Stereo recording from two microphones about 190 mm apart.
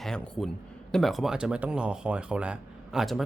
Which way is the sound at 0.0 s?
Centre (ahead or behind).